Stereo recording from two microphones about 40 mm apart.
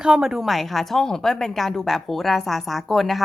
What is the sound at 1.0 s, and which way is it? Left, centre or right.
A woman's voice, centre.